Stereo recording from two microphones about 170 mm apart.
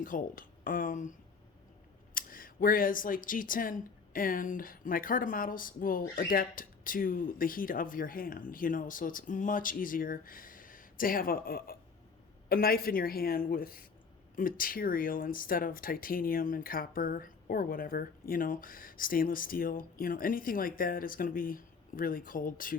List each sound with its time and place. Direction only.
0.0 s speech: 50° left (ahead or behind)
2.1 s speech: 55° left (ahead or behind)